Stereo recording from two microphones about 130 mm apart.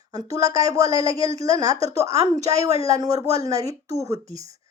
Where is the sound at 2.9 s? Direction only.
25° right (ahead or behind).